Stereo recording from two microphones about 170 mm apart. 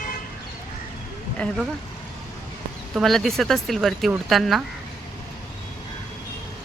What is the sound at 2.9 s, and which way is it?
Speech, centre (ahead or behind).